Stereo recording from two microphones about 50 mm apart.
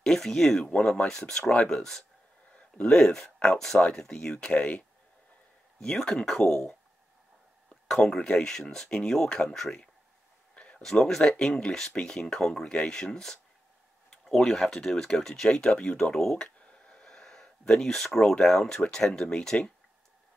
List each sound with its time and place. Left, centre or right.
0.0 s speech: centre
4.3 s speech: left
5.8 s speech: centre
10.5 s a sound: left
10.8 s speech: centre